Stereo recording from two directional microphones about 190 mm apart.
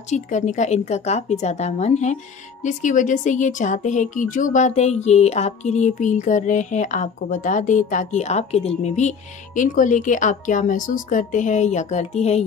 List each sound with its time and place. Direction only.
0.1 s speech: 40° left (ahead or behind)